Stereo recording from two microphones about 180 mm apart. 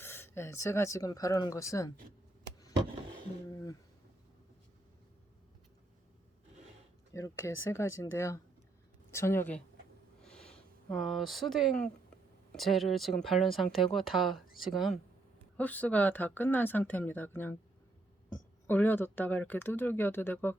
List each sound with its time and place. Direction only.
0.0 s speech: 15° left (ahead or behind)
3.5 s a sound: 20° left (ahead or behind)
7.1 s speech: 15° left (ahead or behind)
10.2 s sniff: 5° left (ahead or behind)
10.9 s speech: centre (ahead or behind)
18.7 s speech: 10° left (ahead or behind)